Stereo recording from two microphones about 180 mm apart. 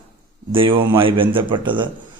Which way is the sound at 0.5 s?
30° right (ahead or behind).